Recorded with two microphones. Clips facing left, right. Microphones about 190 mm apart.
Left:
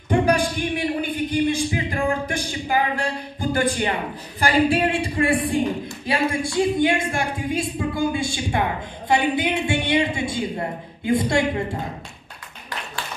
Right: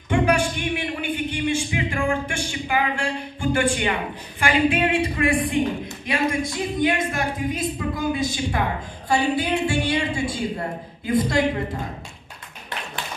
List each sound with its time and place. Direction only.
0.1 s a man's voice: 35° left (ahead or behind)